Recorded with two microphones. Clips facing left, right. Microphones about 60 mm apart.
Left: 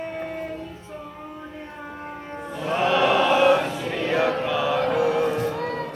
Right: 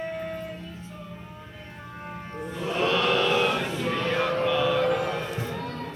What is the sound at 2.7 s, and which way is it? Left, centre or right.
Chant, centre.